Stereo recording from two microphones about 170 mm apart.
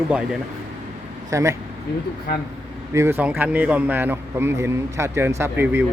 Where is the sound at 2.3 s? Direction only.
65° left (ahead or behind).